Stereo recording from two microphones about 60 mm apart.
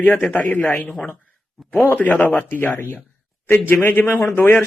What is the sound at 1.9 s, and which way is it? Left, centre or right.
Speech, left.